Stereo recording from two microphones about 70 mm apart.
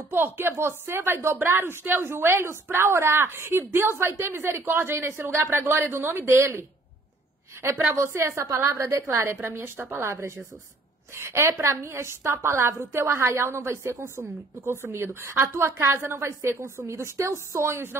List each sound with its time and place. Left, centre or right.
0.1 s a woman's voice: right
7.6 s a woman's voice: right
7.9 s a woman's voice: right